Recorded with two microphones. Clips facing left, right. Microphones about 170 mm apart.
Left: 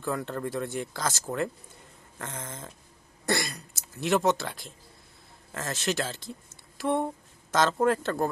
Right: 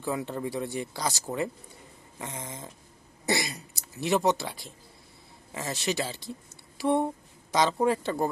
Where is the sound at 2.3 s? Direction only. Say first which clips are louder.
Even; 15° right (ahead or behind).